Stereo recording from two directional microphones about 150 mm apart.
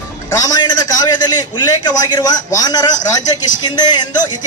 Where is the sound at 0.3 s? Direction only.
25° left (ahead or behind).